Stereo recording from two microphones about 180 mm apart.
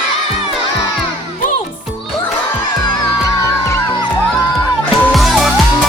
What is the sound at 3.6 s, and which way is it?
Music, 15° left (ahead or behind).